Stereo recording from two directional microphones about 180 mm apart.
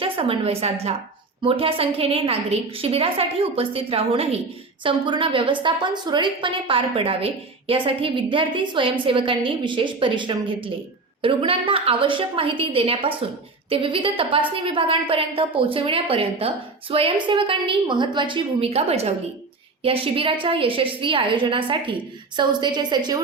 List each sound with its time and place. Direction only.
0.0 s a woman's voice: 30° right (ahead or behind)